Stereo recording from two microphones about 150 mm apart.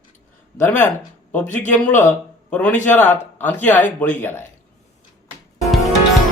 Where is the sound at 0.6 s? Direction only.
10° left (ahead or behind).